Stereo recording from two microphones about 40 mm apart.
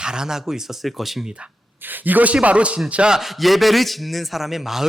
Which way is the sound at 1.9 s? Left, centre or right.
Right.